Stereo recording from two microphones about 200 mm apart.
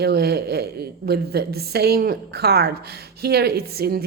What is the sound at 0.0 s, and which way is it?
Speech, 55° right (ahead or behind).